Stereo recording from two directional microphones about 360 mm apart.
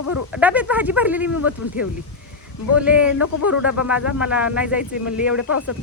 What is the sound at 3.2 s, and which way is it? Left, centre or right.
Speech, left.